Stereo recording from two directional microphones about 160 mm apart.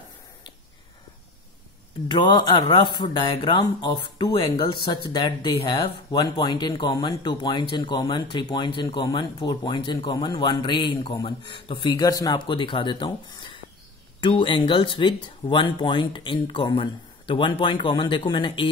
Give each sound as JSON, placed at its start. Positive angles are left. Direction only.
{"t": 2.0, "sound": "speech", "side_deg": 30}